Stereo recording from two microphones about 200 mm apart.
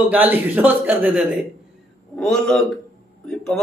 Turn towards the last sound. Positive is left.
turn(degrees=5)  # may be behind; listen again after turning